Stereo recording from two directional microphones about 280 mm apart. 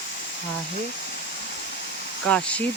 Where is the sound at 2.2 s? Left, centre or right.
Centre.